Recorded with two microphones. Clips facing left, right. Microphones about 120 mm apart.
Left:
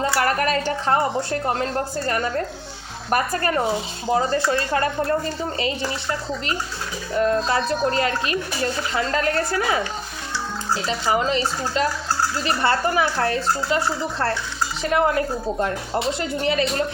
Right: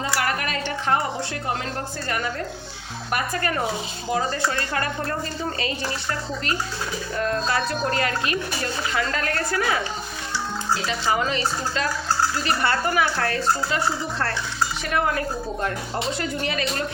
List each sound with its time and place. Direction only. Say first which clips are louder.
0.2 s music: left 5 dB; 40° left (ahead or behind)
3.1 s speech: left 4 dB; 35° left (ahead or behind)
10.8 s speech: left 4 dB; 25° left (ahead or behind)
14.9 s speech: left 4 dB; 25° left (ahead or behind)